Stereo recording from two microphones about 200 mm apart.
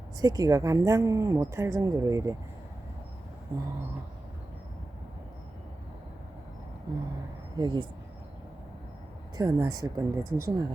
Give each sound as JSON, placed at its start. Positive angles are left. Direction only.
{"t": 0.2, "sound": "speech", "side_deg": -20}
{"t": 3.5, "sound": "speech", "side_deg": -15}
{"t": 6.9, "sound": "speech", "side_deg": -20}
{"t": 9.4, "sound": "speech", "side_deg": -20}
{"t": 10.2, "sound": "speech", "side_deg": -45}